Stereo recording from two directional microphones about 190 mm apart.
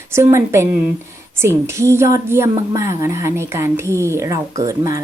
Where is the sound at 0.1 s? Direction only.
15° right (ahead or behind).